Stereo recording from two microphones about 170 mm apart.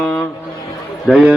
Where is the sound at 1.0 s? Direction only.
5° right (ahead or behind).